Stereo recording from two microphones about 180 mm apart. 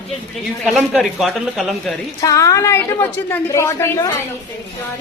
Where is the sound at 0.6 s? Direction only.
Centre (ahead or behind).